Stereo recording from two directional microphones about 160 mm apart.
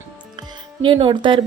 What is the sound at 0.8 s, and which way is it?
Speech, 30° right (ahead or behind).